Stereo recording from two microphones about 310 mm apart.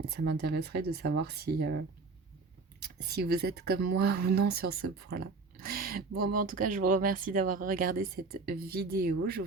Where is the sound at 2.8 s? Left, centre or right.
Right.